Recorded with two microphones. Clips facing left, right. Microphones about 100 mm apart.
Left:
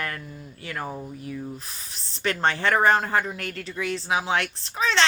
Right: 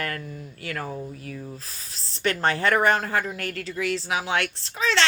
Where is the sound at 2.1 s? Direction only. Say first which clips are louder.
Right 1 dB; 30° left (ahead or behind).